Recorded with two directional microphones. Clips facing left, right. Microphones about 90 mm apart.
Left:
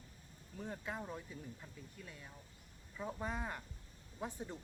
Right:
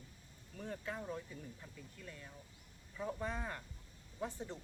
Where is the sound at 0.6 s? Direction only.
15° left (ahead or behind).